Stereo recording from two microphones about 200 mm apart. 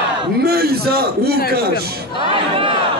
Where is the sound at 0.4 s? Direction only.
50° right (ahead or behind).